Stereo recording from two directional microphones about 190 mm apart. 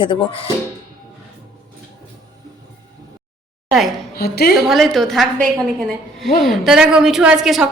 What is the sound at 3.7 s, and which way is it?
Speech, centre (ahead or behind).